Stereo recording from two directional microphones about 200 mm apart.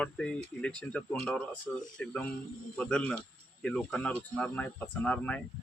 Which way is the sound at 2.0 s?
5° left (ahead or behind).